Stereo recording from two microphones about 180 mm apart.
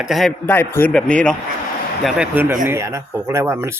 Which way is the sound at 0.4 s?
10° left (ahead or behind).